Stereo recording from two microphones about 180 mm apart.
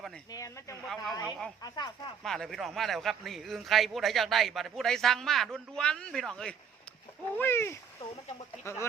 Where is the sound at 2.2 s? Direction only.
Centre (ahead or behind).